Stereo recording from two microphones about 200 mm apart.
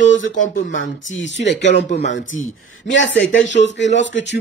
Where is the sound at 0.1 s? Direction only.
70° left (ahead or behind).